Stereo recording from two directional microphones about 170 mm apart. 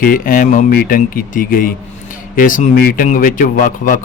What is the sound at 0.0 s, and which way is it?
A man's voice, 55° left (ahead or behind).